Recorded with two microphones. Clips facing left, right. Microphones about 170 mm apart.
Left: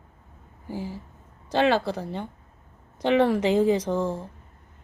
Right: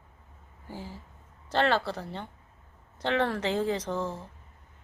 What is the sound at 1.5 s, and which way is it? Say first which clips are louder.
A woman's voice: left 4 dB; 15° left (ahead or behind).